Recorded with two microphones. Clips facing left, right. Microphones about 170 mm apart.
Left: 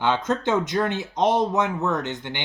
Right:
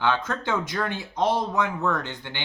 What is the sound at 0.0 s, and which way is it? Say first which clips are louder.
Speech: left 3 dB; 20° left (ahead or behind).